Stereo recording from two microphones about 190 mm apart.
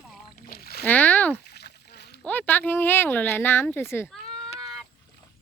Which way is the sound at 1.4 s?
60° left (ahead or behind).